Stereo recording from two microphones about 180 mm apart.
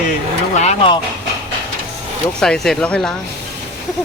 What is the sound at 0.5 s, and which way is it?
Speech, 40° left (ahead or behind).